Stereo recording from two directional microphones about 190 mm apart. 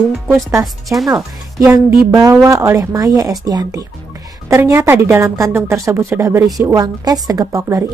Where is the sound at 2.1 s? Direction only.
15° right (ahead or behind).